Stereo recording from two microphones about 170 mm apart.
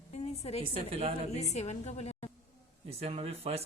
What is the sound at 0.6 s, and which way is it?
Speech, 35° right (ahead or behind).